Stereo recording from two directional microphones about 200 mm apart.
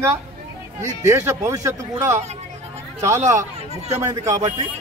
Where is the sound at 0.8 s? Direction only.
15° right (ahead or behind).